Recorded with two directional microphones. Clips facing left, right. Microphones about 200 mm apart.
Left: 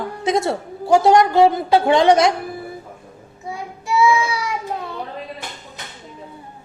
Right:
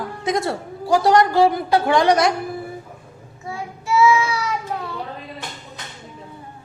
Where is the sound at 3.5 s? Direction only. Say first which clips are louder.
Even; 15° left (ahead or behind).